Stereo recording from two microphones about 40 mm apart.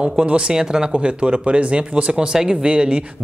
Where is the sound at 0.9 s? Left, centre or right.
Right.